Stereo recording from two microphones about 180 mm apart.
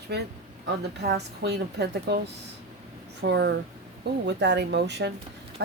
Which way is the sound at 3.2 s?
65° right (ahead or behind).